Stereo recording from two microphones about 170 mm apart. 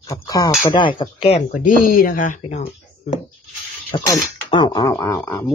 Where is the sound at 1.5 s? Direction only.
55° left (ahead or behind).